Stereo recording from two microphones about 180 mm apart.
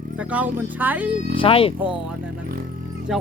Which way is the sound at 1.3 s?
30° left (ahead or behind).